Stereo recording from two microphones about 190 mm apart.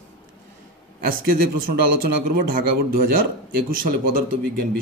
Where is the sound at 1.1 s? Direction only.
50° right (ahead or behind).